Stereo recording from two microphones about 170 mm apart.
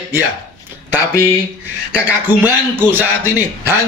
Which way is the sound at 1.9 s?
10° right (ahead or behind).